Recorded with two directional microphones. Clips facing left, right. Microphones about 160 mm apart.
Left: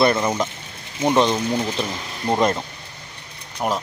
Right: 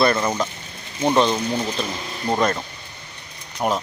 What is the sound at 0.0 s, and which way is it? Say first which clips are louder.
Speech: left 1 dB; 20° left (ahead or behind).